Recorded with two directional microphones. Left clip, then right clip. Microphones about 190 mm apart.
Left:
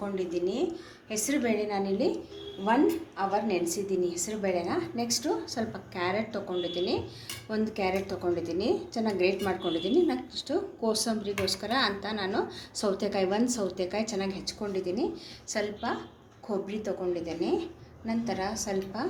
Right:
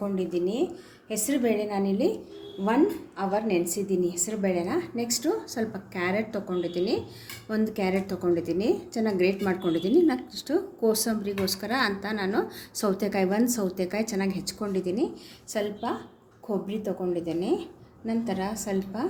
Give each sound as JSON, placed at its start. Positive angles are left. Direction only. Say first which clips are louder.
{"t": 0.0, "sound": "a woman's voice", "louder": "right 2 dB", "side_deg": -55}